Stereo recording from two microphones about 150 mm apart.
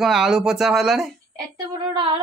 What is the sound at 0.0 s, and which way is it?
Mantra, 5° right (ahead or behind).